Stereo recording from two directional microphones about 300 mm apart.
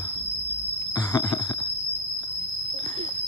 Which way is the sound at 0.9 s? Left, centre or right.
Centre.